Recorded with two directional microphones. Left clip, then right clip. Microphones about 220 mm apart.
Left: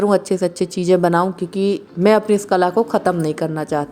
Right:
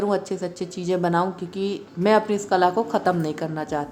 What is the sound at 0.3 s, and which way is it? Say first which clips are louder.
Speech: left 10 dB; 30° left (ahead or behind).